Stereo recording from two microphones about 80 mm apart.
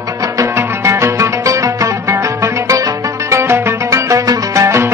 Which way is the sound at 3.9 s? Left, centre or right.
Right.